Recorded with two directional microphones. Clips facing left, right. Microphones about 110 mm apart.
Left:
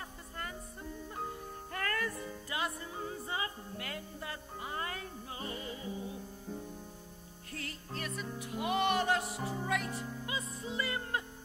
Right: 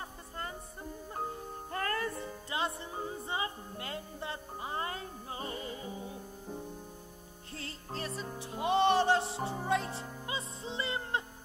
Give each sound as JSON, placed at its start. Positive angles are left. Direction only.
{"t": 1.7, "sound": "music", "side_deg": -30}